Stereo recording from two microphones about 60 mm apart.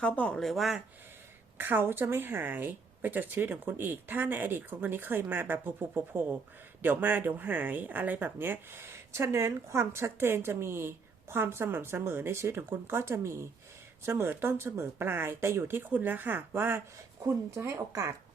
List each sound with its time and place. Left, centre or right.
0.3 s speech: centre
1.5 s speech: right
17.2 s speech: right